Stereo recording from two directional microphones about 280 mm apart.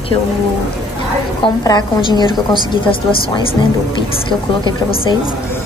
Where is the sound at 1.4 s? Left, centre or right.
Centre.